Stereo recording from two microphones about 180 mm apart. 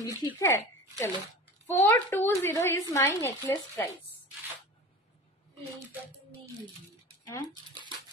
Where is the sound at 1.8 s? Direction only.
15° left (ahead or behind).